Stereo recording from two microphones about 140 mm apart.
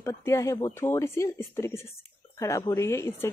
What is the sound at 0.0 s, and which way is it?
A woman's voice, 20° left (ahead or behind).